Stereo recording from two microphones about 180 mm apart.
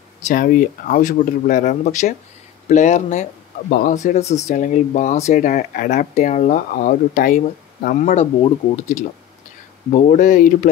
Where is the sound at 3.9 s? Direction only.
40° left (ahead or behind).